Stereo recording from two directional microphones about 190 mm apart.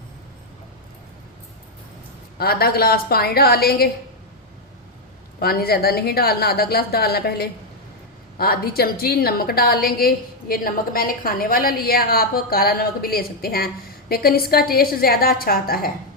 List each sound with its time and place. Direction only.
2.4 s a woman's voice: 55° left (ahead or behind)
5.4 s a woman's voice: 55° left (ahead or behind)